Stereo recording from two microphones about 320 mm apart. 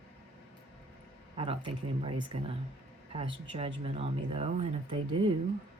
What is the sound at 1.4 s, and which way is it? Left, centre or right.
Speech, centre.